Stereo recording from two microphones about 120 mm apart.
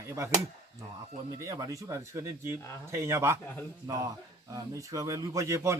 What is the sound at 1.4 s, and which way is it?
Speech, 25° right (ahead or behind).